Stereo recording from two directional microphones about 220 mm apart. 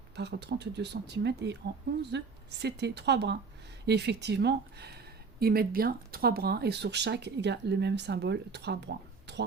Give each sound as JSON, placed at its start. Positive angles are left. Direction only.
{"t": 0.2, "sound": "speech", "side_deg": -50}